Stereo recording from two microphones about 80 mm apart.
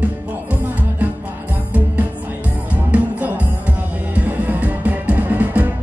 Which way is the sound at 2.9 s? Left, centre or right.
Centre.